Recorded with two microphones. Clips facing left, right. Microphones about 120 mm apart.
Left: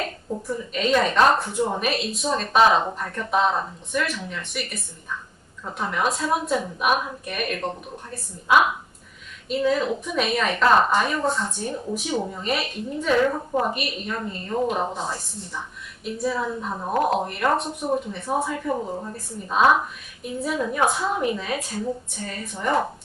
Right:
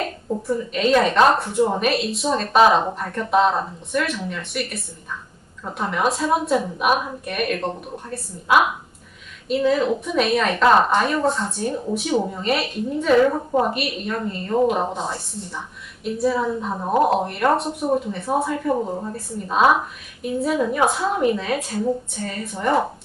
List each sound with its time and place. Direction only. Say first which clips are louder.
0.7 s a woman's voice: right 3 dB; centre (ahead or behind)
13.3 s a woman's voice: right 4 dB; 15° right (ahead or behind)
13.7 s a woman's voice: right 3 dB; centre (ahead or behind)